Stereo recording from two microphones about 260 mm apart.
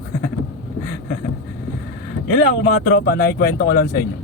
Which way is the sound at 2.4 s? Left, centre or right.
Left.